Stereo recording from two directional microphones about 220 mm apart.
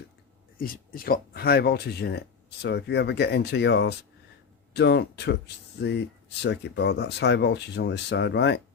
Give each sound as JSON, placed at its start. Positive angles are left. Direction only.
{"t": 0.6, "sound": "speech", "side_deg": 40}